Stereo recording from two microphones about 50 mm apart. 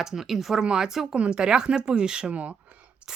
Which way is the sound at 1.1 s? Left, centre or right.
Centre.